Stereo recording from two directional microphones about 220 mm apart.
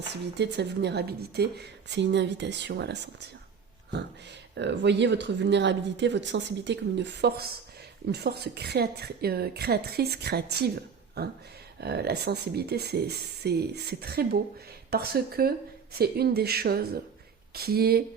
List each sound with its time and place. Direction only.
0.3 s speech: 50° right (ahead or behind)
4.5 s speech: 50° right (ahead or behind)
11.8 s speech: 45° right (ahead or behind)